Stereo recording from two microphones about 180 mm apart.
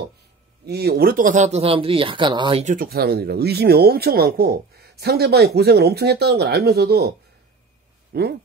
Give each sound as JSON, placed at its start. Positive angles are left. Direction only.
{"t": 0.7, "sound": "speech", "side_deg": -60}
{"t": 2.6, "sound": "speech", "side_deg": -50}
{"t": 8.1, "sound": "speech", "side_deg": -65}